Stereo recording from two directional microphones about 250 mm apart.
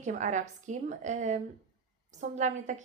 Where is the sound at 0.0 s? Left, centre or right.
Right.